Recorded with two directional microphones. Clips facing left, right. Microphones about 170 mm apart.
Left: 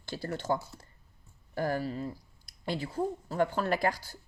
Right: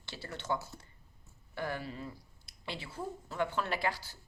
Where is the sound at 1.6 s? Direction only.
40° left (ahead or behind).